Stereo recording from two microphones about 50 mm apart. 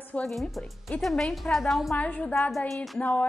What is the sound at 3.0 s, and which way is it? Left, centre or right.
Speech, left.